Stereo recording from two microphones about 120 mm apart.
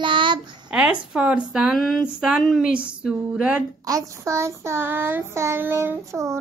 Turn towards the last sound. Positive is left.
turn(degrees=-25)  # may be behind; listen again after turning